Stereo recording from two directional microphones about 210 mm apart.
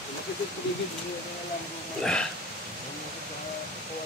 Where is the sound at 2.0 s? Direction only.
5° left (ahead or behind).